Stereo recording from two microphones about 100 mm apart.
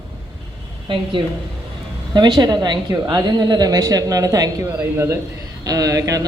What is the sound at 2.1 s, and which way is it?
A woman's voice, 50° right (ahead or behind).